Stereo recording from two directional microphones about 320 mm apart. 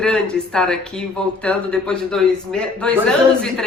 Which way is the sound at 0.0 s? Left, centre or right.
Centre.